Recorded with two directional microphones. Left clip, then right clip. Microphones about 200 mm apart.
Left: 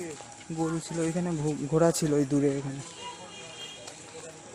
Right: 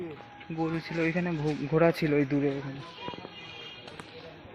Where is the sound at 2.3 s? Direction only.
25° left (ahead or behind).